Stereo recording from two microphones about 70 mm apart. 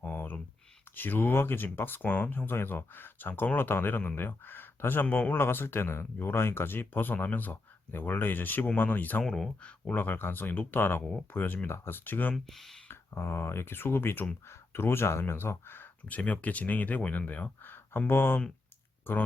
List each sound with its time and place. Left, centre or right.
0.0 s a sound: left
0.9 s speech: left
5.1 s speech: centre
5.4 s speech: left
9.2 s speech: centre
9.6 s speech: centre
9.9 s speech: left
12.3 s speech: centre
12.9 s speech: left
16.0 s speech: left